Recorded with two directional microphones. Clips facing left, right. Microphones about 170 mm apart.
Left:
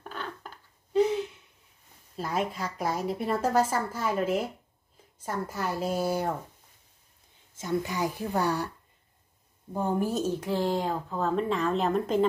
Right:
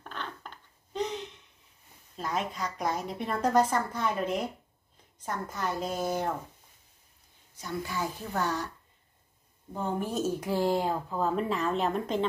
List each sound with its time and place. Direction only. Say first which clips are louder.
0.1 s a sound: left 1 dB; 5° left (ahead or behind)
2.1 s a woman's voice: left 2 dB; 5° left (ahead or behind)
7.5 s a woman's voice: left 5 dB; 20° left (ahead or behind)
9.8 s a woman's voice: left 3 dB; 10° left (ahead or behind)
10.2 s a woman's voice: even; 10° right (ahead or behind)